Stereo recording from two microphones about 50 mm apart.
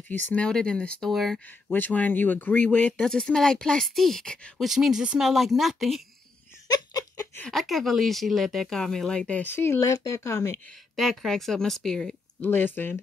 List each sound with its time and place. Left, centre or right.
0.4 s speech: centre
1.1 s speech: centre
1.7 s speech: left
2.6 s speech: left
3.1 s speech: centre
4.6 s speech: centre
7.5 s speech: centre
9.3 s speech: left
9.8 s speech: left
11.0 s speech: centre
12.4 s speech: left